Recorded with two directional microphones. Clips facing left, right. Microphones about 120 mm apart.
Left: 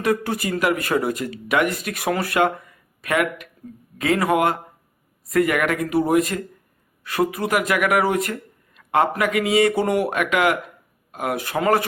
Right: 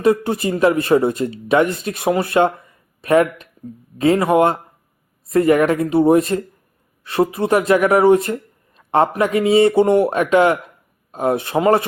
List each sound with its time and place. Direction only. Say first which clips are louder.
0.0 s speech: right 6 dB; 25° right (ahead or behind)